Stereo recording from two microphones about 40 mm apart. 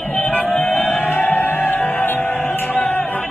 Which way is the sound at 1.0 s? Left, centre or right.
Left.